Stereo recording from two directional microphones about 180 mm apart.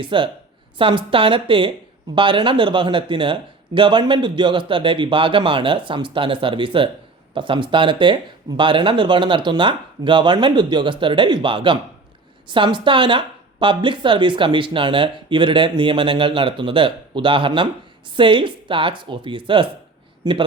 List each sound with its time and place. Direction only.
0.0 s a woman's voice: 25° right (ahead or behind)